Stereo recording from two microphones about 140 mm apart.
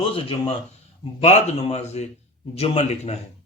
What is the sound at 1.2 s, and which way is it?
A man's voice, 50° left (ahead or behind).